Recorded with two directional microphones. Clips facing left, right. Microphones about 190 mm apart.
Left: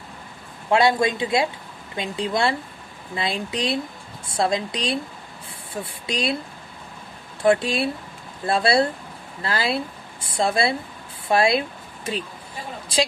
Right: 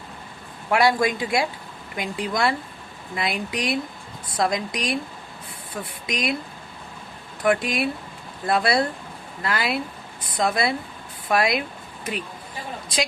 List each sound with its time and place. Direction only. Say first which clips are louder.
0.7 s speech: left 1 dB; 25° left (ahead or behind)
7.4 s speech: left 2 dB; 30° left (ahead or behind)